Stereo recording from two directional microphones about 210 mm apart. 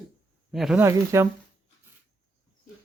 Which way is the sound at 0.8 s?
15° right (ahead or behind).